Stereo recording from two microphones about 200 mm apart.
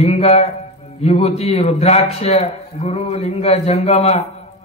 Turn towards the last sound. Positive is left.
turn(degrees=35)  # may be behind; listen again after turning